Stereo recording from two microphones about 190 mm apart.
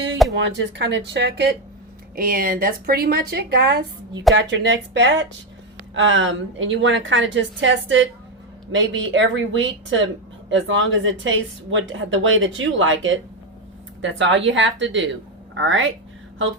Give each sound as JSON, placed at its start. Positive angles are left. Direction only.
{"t": 0.3, "sound": "speech", "side_deg": -70}
{"t": 2.1, "sound": "a woman's voice", "side_deg": -50}
{"t": 4.4, "sound": "a woman's voice", "side_deg": -75}
{"t": 10.5, "sound": "a woman's voice", "side_deg": -85}
{"t": 14.0, "sound": "speech", "side_deg": -80}
{"t": 15.5, "sound": "a woman's voice", "side_deg": -85}